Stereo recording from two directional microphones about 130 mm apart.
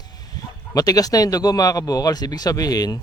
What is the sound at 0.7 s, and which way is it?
Speech, 30° left (ahead or behind).